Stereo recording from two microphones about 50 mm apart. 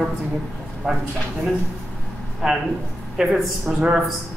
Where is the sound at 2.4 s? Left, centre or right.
Centre.